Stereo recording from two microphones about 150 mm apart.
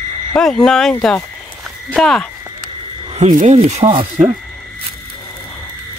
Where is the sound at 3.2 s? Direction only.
50° right (ahead or behind).